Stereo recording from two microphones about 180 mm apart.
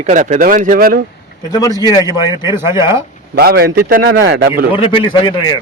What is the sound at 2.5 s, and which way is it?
Speech, 15° right (ahead or behind).